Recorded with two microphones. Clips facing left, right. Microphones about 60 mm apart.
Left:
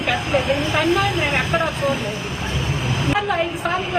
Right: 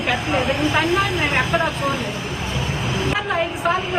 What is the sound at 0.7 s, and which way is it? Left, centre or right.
Speech, centre.